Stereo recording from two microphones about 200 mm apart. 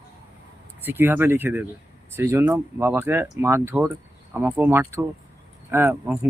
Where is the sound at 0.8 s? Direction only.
10° right (ahead or behind).